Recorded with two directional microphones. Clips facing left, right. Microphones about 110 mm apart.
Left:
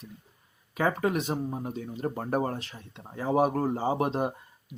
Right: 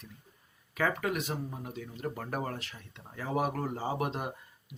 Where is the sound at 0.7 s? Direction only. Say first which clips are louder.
Left 4 dB; 25° left (ahead or behind).